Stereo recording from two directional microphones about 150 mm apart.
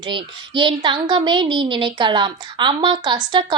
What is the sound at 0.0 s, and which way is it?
A woman's voice, 35° right (ahead or behind).